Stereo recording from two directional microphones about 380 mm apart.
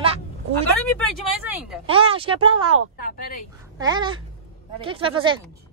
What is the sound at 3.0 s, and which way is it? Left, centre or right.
Speech, left.